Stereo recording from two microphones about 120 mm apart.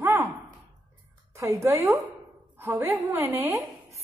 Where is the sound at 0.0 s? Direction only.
20° right (ahead or behind).